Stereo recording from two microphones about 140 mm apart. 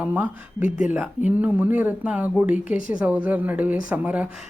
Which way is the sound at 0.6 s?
70° left (ahead or behind).